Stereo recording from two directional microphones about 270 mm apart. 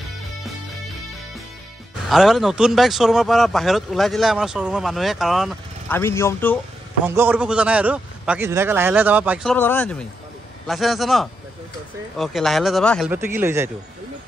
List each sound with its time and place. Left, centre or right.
2.0 s speech: centre
7.1 s a man's voice: centre